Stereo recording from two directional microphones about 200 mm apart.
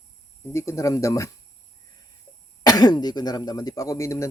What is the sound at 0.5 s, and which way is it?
Speech, 15° left (ahead or behind).